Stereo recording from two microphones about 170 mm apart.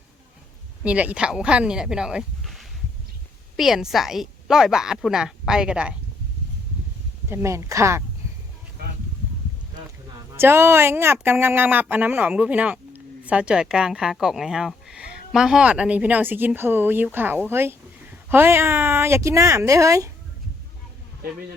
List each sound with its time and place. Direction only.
0.9 s a woman's voice: 10° right (ahead or behind)
7.3 s speech: 15° right (ahead or behind)
10.3 s speech: 15° right (ahead or behind)